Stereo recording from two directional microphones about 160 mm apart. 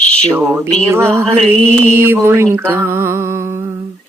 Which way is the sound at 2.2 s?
15° right (ahead or behind).